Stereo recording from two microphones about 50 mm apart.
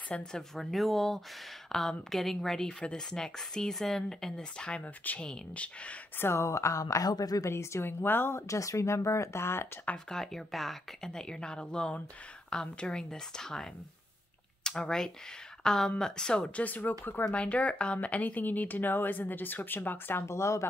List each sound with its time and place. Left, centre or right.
0.1 s a woman's voice: centre
0.7 s a woman's voice: centre; by 5.9 s left
6.1 s speech: left
6.4 s a woman's voice: left
7.4 s speech: left
7.8 s speech: left
10.0 s a woman's voice: centre
11.1 s a woman's voice: centre
16.6 s speech: left
17.3 s speech: left
20.2 s speech: left